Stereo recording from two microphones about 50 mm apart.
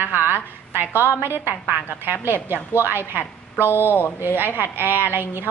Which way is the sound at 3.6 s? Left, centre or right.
Left.